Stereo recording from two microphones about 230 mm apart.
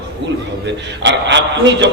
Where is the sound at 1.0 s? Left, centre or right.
Right.